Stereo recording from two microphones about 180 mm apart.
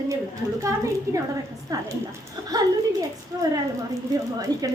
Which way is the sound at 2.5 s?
20° right (ahead or behind).